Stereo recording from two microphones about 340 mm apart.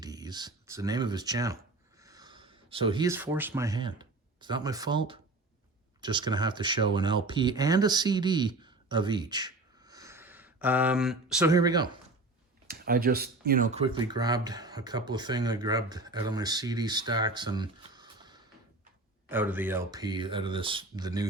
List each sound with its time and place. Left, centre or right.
0.0 s speech: centre
12.6 s speech: right; by 21.2 s centre